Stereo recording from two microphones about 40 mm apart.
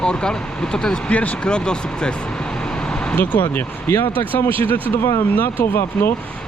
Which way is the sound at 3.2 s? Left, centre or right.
Left.